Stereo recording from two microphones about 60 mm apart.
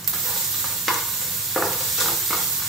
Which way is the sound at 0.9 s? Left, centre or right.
Centre.